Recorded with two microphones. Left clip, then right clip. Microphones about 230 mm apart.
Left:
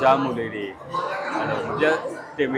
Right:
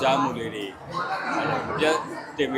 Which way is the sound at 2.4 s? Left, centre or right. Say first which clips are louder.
Left 2 dB; left.